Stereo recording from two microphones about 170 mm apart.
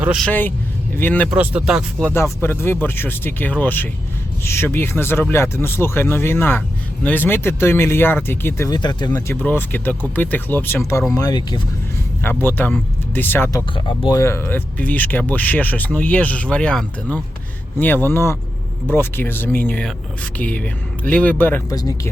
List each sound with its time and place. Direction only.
0.0 s speech: 5° right (ahead or behind)
0.3 s speech: 10° left (ahead or behind)
1.3 s speech: 5° right (ahead or behind)
2.0 s speech: 15° left (ahead or behind)
12.2 s speech: 10° left (ahead or behind)
13.7 s speech: 30° left (ahead or behind)
14.2 s speech: 15° left (ahead or behind)